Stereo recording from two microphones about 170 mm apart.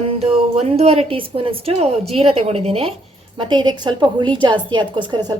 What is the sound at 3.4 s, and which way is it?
A woman's voice, 25° right (ahead or behind).